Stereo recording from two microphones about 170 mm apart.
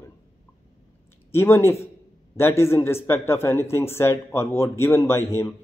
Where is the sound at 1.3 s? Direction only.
15° left (ahead or behind).